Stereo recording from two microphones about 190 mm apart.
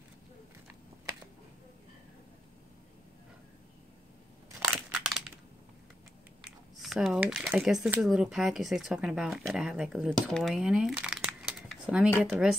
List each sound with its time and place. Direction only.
5.0 s crushing: centre (ahead or behind)
6.8 s speech: centre (ahead or behind)